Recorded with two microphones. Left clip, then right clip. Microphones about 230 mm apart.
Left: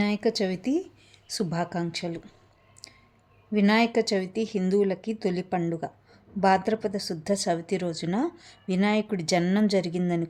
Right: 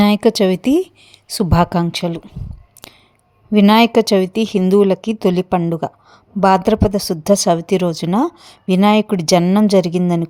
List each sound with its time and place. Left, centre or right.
0.0 s speech: right
3.5 s speech: right